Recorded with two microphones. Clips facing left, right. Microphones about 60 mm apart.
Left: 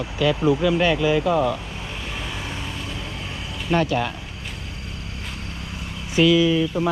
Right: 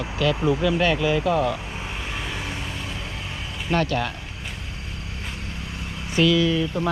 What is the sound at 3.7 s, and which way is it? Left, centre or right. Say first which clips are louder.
Speech: left 2 dB; left.